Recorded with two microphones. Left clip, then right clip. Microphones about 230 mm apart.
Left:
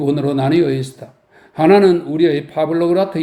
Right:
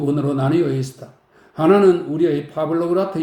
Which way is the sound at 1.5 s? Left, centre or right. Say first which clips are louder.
Left 3 dB; left.